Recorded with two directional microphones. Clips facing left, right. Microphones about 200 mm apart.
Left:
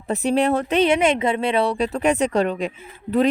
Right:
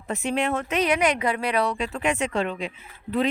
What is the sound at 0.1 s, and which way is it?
Speech, 35° left (ahead or behind).